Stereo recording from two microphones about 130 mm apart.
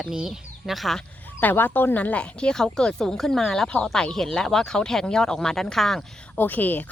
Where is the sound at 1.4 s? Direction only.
15° left (ahead or behind).